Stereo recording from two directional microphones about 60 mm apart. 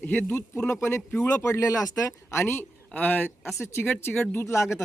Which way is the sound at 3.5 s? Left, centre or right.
Left.